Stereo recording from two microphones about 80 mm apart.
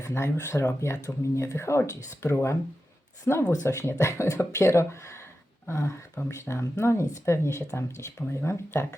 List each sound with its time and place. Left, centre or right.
0.0 s speech: left